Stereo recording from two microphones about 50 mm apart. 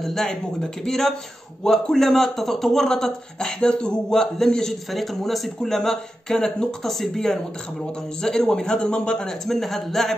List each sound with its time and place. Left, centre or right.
0.0 s speech: centre
9.5 s a man's voice: centre